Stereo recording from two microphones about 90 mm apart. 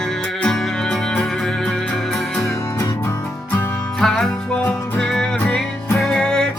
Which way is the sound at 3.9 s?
5° left (ahead or behind).